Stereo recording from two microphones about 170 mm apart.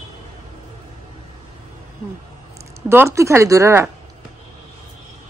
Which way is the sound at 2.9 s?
15° right (ahead or behind).